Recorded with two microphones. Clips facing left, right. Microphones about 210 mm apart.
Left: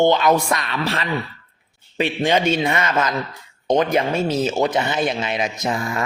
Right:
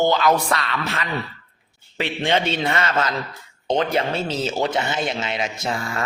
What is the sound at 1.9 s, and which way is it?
Speech, 20° left (ahead or behind).